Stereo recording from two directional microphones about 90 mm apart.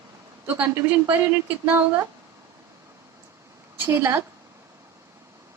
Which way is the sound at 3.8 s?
25° right (ahead or behind).